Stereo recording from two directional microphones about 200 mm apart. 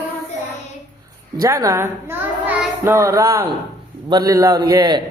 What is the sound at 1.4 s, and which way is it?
A child's voice, 15° right (ahead or behind).